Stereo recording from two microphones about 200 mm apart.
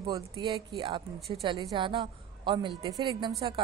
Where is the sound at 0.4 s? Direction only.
20° right (ahead or behind).